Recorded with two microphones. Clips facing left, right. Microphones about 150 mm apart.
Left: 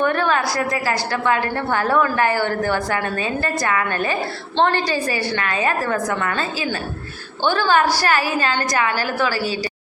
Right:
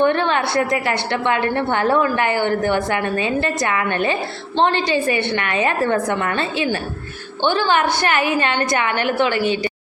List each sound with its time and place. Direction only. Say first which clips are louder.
0.0 s a woman's voice: right 2 dB; 25° right (ahead or behind)